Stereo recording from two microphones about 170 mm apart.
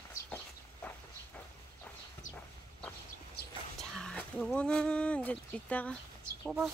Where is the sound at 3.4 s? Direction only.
70° left (ahead or behind).